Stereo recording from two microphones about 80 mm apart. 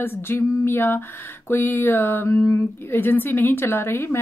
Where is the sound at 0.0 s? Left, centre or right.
Left.